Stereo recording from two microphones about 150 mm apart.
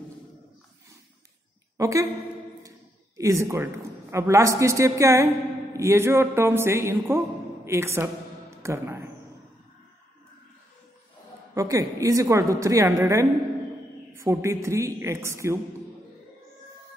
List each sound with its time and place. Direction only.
1.8 s a woman's voice: 20° right (ahead or behind)
3.2 s a woman's voice: 20° right (ahead or behind)
7.6 s a sound: 15° right (ahead or behind)
11.5 s a woman's voice: 20° right (ahead or behind)